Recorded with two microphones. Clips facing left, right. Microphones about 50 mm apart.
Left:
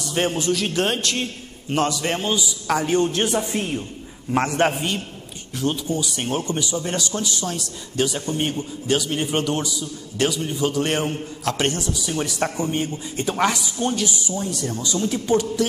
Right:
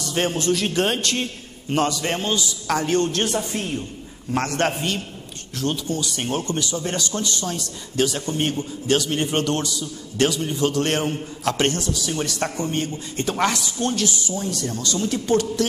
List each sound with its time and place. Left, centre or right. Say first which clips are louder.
0.0 s a man's voice: even; centre